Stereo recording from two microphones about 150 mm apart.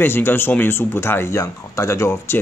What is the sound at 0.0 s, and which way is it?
Speech, 15° left (ahead or behind).